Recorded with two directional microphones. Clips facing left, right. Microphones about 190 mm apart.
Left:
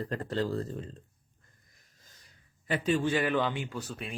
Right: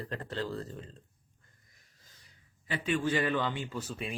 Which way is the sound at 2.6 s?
40° left (ahead or behind).